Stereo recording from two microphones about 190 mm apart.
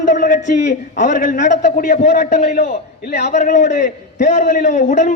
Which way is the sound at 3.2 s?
40° left (ahead or behind).